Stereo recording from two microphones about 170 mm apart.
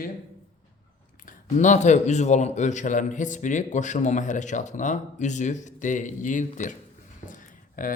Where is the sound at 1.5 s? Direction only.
45° left (ahead or behind).